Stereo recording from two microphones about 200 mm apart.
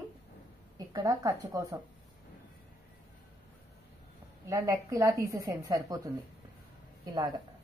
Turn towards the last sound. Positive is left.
turn(degrees=-20)  # may be behind; listen again after turning